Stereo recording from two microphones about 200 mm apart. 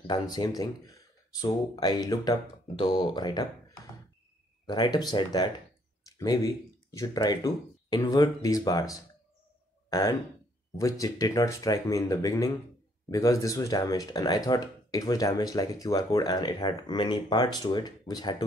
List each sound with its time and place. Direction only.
0.0 s speech: 20° left (ahead or behind)
4.6 s speech: 20° left (ahead or behind)